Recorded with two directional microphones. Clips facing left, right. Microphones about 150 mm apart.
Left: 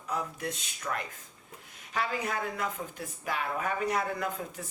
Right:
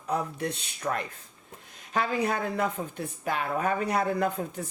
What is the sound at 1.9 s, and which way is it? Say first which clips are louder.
Speech: right 5 dB; 35° right (ahead or behind).